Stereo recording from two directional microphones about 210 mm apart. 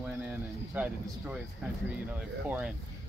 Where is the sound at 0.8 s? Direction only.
5° right (ahead or behind).